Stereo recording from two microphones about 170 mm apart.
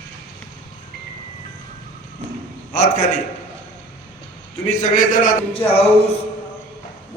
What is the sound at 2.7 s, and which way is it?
Speech, 45° left (ahead or behind).